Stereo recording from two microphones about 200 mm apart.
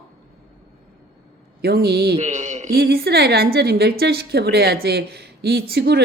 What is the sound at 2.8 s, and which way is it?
A woman's voice, 50° right (ahead or behind).